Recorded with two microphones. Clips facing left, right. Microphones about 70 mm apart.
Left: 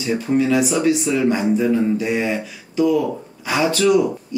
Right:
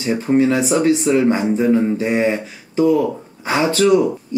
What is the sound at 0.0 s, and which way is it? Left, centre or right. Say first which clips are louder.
Speech: right 3 dB; right.